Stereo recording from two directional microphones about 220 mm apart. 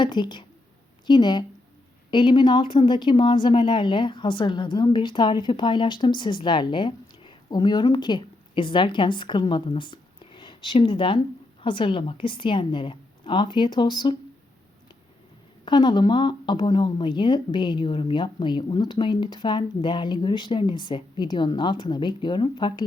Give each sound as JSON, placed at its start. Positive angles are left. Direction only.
{"t": 0.0, "sound": "speech", "side_deg": 20}
{"t": 15.6, "sound": "speech", "side_deg": 20}